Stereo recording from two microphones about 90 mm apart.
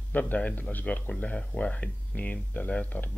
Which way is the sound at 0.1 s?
15° left (ahead or behind).